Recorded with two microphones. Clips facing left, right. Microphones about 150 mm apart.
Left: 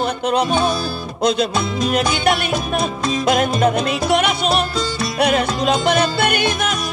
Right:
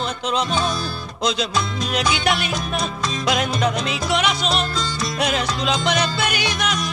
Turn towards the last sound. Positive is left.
turn(degrees=50)  # may be behind; listen again after turning